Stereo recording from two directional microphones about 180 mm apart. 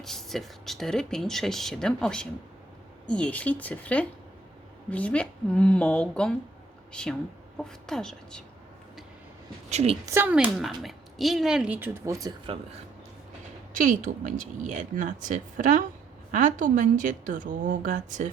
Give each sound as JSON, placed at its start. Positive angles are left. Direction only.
{"t": 0.0, "sound": "speech", "side_deg": 0}
{"t": 9.6, "sound": "a woman's voice", "side_deg": -35}
{"t": 10.1, "sound": "speech", "side_deg": -10}
{"t": 13.7, "sound": "speech", "side_deg": -45}